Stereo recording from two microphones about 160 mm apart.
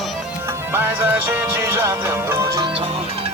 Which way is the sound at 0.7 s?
10° right (ahead or behind).